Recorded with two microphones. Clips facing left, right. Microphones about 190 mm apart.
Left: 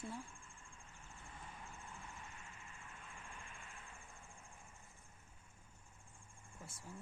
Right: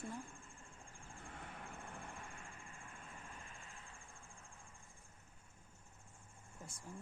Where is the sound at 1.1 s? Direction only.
65° right (ahead or behind).